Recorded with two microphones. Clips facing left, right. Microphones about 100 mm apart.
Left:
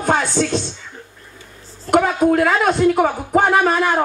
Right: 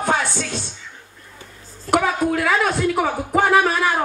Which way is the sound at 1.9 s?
45° left (ahead or behind).